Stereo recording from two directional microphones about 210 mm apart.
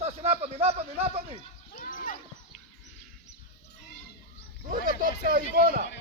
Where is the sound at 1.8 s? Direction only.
40° left (ahead or behind).